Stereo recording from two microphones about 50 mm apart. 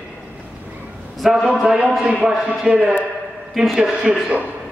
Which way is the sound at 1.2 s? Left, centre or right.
Centre.